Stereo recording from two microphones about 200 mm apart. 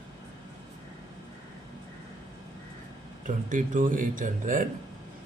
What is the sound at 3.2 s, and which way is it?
A man's voice, 40° right (ahead or behind).